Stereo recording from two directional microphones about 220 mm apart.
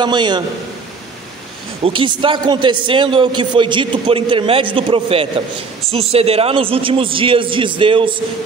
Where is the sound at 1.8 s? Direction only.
25° right (ahead or behind).